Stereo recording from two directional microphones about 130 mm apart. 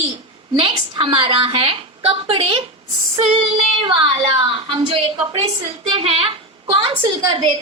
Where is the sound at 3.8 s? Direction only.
45° right (ahead or behind).